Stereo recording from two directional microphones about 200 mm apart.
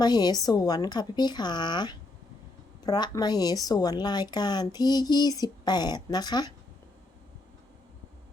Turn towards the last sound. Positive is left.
turn(degrees=20)  # may be behind; listen again after turning